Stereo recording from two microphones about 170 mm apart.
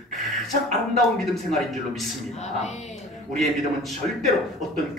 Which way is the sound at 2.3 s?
40° left (ahead or behind).